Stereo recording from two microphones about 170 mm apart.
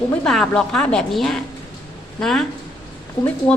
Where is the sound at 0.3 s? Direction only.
5° left (ahead or behind).